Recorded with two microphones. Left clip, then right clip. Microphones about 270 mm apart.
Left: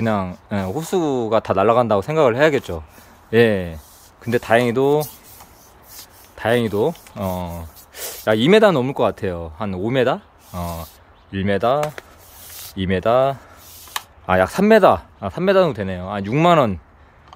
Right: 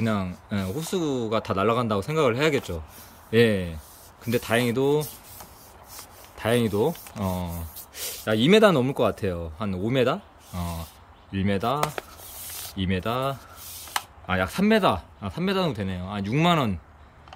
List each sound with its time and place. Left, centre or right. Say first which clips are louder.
0.0 s speech: left 7 dB; centre
6.3 s speech: left 5 dB; centre